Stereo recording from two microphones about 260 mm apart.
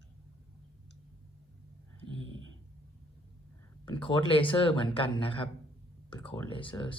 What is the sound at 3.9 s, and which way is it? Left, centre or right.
Speech, centre.